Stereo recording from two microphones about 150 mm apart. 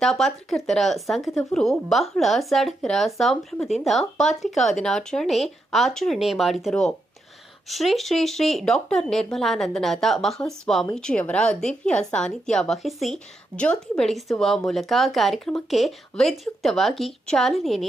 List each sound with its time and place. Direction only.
0.0 s speech: 5° left (ahead or behind)
1.3 s a woman's voice: 20° left (ahead or behind)
1.5 s speech: centre (ahead or behind)